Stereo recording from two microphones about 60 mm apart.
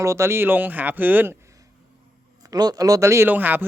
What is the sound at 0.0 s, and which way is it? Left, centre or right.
Speech, right.